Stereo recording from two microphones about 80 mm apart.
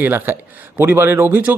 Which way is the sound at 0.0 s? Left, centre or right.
Right.